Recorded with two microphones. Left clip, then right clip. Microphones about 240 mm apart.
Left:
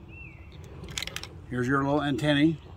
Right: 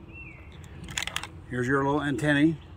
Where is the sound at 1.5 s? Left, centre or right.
Centre.